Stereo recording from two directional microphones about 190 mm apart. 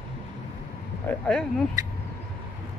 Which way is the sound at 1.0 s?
5° left (ahead or behind).